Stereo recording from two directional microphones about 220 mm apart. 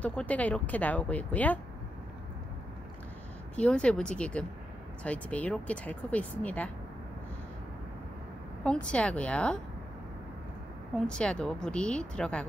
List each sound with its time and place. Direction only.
0.0 s speech: 5° left (ahead or behind)
3.5 s speech: 5° left (ahead or behind)
8.8 s speech: 5° left (ahead or behind)
11.1 s speech: 5° left (ahead or behind)